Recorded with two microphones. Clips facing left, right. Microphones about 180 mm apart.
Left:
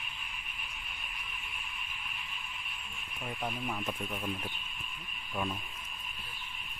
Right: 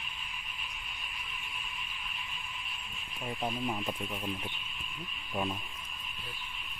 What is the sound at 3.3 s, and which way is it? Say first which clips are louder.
Speech: right 3 dB; 20° right (ahead or behind).